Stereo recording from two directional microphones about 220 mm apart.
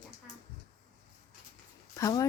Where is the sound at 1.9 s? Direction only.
15° left (ahead or behind).